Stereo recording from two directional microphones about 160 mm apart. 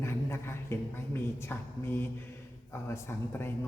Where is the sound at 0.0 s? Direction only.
15° left (ahead or behind).